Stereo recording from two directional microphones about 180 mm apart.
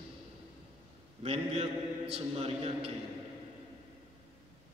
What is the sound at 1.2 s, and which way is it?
A man's voice, 35° right (ahead or behind).